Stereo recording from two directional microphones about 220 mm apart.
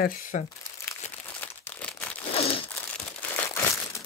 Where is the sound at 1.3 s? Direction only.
5° left (ahead or behind).